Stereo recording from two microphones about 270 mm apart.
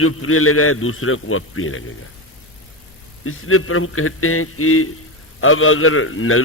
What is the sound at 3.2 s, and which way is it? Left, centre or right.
A man's voice, left.